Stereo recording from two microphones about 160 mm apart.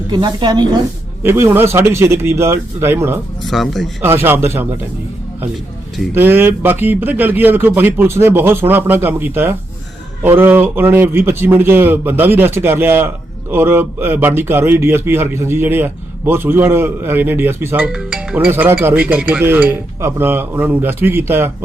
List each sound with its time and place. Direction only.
0.1 s speech: 25° right (ahead or behind)
1.2 s a man's voice: 15° right (ahead or behind)
3.4 s speech: centre (ahead or behind)
4.0 s a man's voice: 15° right (ahead or behind)
6.1 s a man's voice: 15° right (ahead or behind)